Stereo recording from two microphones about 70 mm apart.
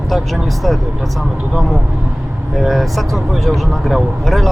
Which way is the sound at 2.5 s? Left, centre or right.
Centre.